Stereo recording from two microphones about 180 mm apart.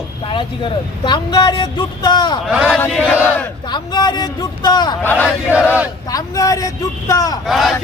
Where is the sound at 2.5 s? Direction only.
5° right (ahead or behind).